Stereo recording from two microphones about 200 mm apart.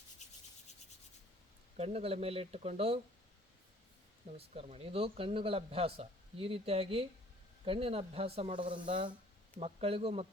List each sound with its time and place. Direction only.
0.2 s rub: 35° left (ahead or behind)
1.7 s a man's voice: 30° right (ahead or behind)
4.4 s a man's voice: 30° right (ahead or behind)